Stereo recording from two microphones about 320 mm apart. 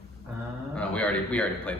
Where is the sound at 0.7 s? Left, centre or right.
Centre.